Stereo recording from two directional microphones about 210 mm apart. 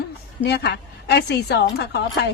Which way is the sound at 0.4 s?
50° left (ahead or behind).